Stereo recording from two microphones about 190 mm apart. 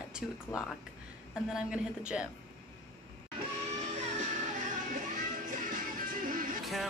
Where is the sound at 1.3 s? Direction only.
5° right (ahead or behind).